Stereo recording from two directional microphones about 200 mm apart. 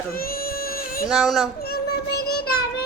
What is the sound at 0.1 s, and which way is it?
Baby cry, 50° left (ahead or behind).